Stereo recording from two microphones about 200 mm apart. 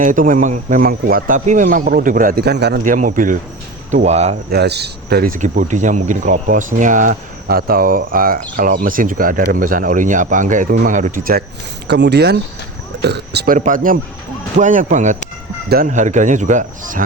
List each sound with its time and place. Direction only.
0.0 s speech: 40° right (ahead or behind)
2.8 s speech: 40° right (ahead or behind)
4.4 s speech: 55° right (ahead or behind)
11.9 s speech: 60° right (ahead or behind); by 17.0 s 40° right (ahead or behind)